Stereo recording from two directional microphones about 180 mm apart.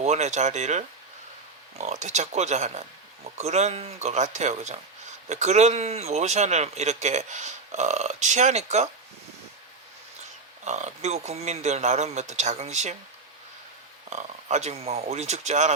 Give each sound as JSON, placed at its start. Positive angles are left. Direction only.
{"t": 0.0, "sound": "speech", "side_deg": -40}
{"t": 10.7, "sound": "speech", "side_deg": -40}
{"t": 14.1, "sound": "speech", "side_deg": -40}